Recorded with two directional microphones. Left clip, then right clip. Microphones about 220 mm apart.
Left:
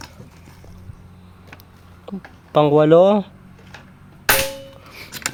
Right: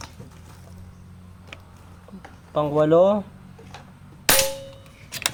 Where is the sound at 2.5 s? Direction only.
50° left (ahead or behind).